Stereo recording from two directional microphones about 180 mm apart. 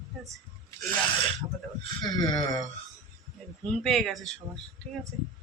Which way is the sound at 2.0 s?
20° left (ahead or behind).